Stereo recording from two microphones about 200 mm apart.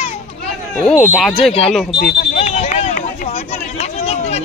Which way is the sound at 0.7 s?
Centre (ahead or behind).